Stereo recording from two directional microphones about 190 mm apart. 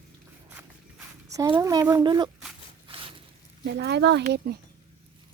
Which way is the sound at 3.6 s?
60° right (ahead or behind).